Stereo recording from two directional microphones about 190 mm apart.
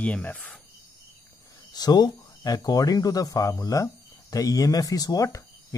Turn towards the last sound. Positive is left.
turn(degrees=15)  # may be behind; listen again after turning